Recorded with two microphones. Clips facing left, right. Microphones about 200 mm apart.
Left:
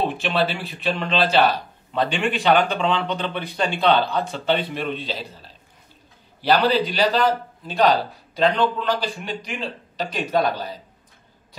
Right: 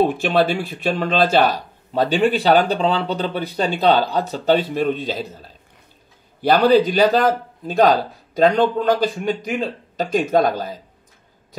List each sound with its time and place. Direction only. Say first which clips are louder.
0.0 s speech: right 5 dB; 45° right (ahead or behind)